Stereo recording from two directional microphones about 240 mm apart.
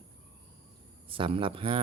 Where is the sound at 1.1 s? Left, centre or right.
Right.